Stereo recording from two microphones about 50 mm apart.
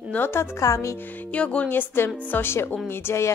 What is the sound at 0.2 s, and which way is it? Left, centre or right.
Speech, left.